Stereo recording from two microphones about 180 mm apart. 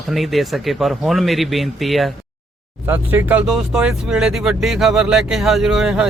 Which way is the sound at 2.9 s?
10° right (ahead or behind).